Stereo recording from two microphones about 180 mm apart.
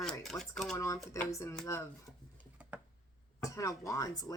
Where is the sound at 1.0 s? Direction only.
15° left (ahead or behind).